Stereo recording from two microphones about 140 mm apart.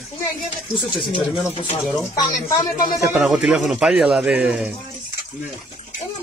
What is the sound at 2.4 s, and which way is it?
Speech, 20° left (ahead or behind).